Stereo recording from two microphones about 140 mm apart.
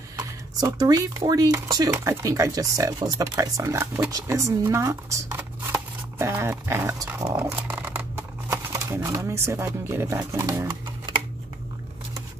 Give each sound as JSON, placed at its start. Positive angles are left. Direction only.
{"t": 0.2, "sound": "speech", "side_deg": -25}